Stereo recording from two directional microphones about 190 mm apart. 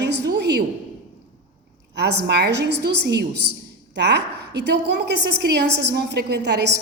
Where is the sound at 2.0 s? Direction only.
60° right (ahead or behind).